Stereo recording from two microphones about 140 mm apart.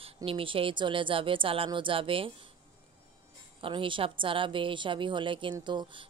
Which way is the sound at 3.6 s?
35° right (ahead or behind).